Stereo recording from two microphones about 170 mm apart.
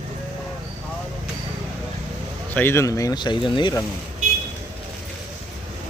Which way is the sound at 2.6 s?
15° left (ahead or behind).